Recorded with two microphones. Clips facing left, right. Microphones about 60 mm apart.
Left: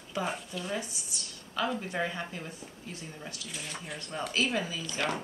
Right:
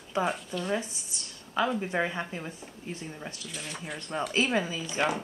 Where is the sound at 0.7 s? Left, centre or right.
Right.